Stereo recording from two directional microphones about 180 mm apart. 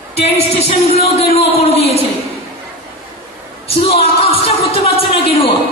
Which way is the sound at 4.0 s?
35° left (ahead or behind).